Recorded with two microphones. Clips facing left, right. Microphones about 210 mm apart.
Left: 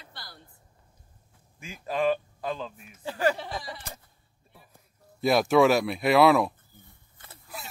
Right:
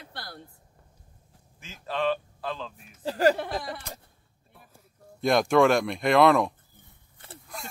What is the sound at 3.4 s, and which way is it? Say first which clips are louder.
Speech: right 5 dB; 55° right (ahead or behind).